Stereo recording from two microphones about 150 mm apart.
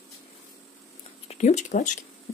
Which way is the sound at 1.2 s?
45° left (ahead or behind).